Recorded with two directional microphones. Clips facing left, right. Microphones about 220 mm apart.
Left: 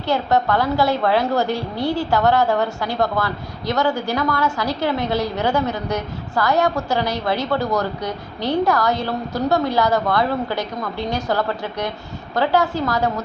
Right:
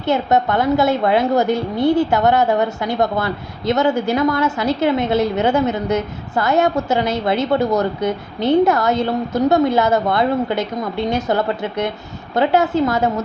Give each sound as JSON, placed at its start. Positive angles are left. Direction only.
{"t": 0.1, "sound": "a woman's voice", "side_deg": -20}